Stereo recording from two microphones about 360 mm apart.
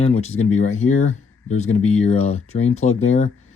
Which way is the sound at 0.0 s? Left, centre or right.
Centre.